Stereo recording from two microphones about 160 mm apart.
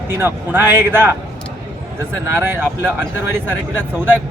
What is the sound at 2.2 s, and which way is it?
Speech, 15° right (ahead or behind).